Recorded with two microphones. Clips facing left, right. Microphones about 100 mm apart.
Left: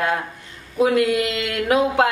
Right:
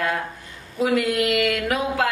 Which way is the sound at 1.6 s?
20° left (ahead or behind).